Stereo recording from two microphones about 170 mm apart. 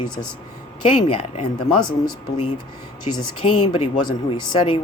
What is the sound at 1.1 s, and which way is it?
Speech, 30° left (ahead or behind).